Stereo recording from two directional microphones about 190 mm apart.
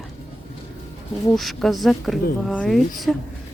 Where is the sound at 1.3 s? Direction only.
Centre (ahead or behind).